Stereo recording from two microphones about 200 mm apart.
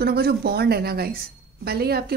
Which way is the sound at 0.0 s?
50° right (ahead or behind).